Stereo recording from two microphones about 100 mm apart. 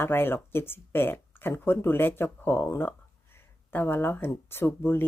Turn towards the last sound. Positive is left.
turn(degrees=20)  # may be behind; listen again after turning